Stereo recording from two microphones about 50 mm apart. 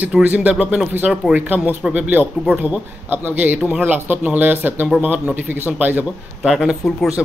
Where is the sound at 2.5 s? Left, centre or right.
Right.